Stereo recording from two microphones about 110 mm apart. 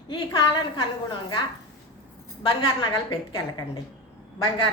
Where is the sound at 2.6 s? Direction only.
45° left (ahead or behind).